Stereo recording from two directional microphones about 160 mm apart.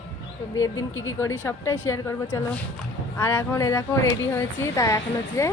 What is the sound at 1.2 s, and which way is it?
A woman's voice, 15° left (ahead or behind).